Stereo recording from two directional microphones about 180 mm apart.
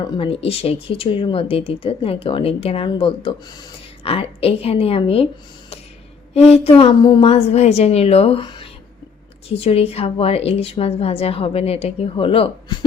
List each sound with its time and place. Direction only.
0.1 s a woman's voice: 30° left (ahead or behind)
6.3 s a woman's voice: 35° left (ahead or behind)